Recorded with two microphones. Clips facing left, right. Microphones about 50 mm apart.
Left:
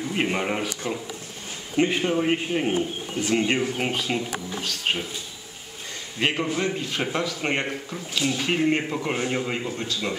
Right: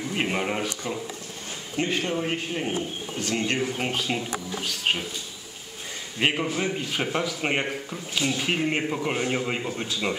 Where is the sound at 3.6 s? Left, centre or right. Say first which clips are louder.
Left 1 dB; centre.